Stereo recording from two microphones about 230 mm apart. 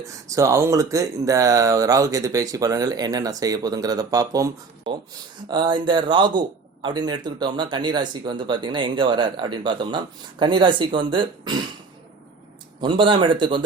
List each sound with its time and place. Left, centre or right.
0.0 s speech: centre
12.8 s speech: right